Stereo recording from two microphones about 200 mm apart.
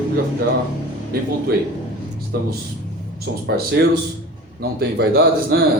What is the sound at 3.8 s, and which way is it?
A man's voice, 55° right (ahead or behind).